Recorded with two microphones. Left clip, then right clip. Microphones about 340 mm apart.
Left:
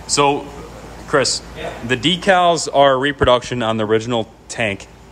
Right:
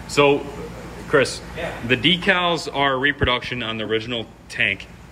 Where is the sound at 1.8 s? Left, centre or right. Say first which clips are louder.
Left 2 dB; centre.